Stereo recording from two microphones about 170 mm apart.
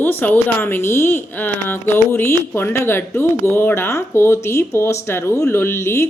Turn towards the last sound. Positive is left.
turn(degrees=15)  # may be behind; listen again after turning